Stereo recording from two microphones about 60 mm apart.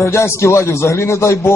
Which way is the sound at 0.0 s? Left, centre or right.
Left.